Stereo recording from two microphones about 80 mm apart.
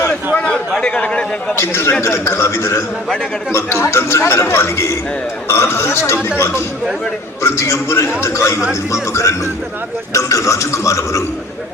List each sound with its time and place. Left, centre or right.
0.3 s a man's voice: centre
1.5 s a man's voice: left